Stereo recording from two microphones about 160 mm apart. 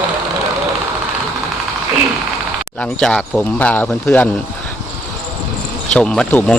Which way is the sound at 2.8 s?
5° left (ahead or behind).